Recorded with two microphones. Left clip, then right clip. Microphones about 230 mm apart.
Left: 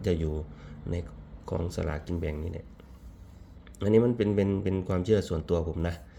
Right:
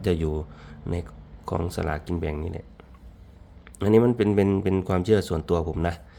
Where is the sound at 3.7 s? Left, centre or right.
Right.